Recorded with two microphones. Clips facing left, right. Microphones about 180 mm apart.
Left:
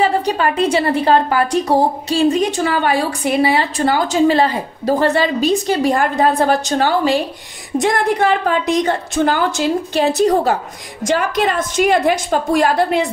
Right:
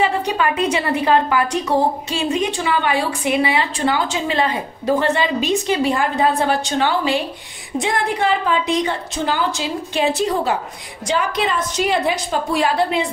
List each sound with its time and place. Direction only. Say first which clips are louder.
0.0 s a woman's voice: left 3 dB; 35° left (ahead or behind)